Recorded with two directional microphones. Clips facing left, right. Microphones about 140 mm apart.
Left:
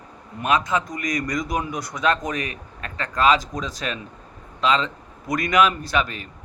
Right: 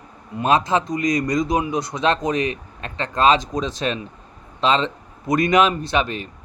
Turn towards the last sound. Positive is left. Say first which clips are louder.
# right 3 dB
turn(degrees=-25)  # may be behind; listen again after turning